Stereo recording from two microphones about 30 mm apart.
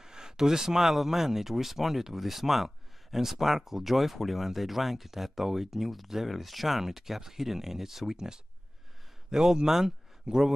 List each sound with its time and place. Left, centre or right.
0.0 s speech: right